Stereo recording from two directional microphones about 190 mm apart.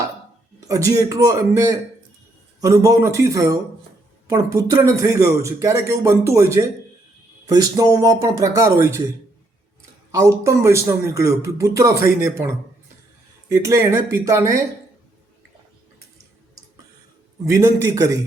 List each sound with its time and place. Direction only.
0.7 s speech: 15° right (ahead or behind)
10.1 s speech: 15° right (ahead or behind)
17.4 s speech: 15° right (ahead or behind)